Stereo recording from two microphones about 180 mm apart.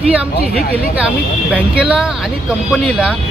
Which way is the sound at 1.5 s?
5° right (ahead or behind).